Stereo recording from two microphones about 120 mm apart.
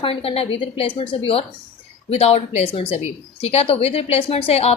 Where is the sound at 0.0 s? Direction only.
50° left (ahead or behind).